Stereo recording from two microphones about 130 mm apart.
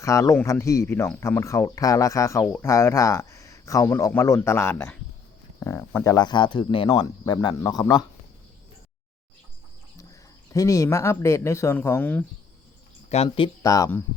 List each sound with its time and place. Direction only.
0.0 s speech: 25° left (ahead or behind)
6.1 s speech: 35° left (ahead or behind)
10.5 s speech: 25° left (ahead or behind)
13.1 s speech: 55° left (ahead or behind)
13.6 s speech: 25° left (ahead or behind)